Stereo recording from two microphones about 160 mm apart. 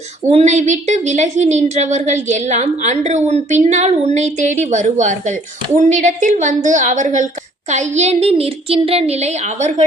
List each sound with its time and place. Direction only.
0.3 s a woman's voice: 45° right (ahead or behind)